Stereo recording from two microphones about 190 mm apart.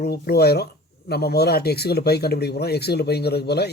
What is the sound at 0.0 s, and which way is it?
Speech, 55° left (ahead or behind).